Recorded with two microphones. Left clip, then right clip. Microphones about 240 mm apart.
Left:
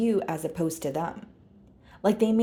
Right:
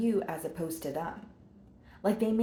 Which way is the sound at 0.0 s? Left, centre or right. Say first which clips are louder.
Left 5 dB; left.